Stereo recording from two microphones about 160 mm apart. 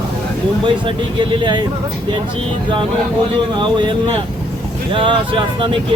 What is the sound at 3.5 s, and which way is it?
Speech, 30° right (ahead or behind).